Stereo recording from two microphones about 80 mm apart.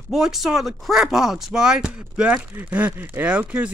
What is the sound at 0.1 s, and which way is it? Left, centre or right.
Speech, centre.